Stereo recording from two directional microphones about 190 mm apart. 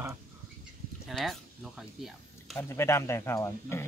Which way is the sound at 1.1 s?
Centre (ahead or behind).